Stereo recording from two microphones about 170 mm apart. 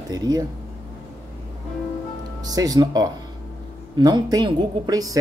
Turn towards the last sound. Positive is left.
turn(degrees=-20)  # may be behind; listen again after turning